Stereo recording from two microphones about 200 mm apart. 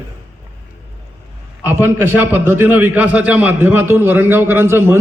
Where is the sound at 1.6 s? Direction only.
10° right (ahead or behind).